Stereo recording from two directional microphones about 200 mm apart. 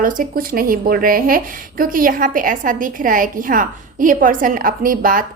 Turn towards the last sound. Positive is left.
turn(degrees=-45)  # may be behind; listen again after turning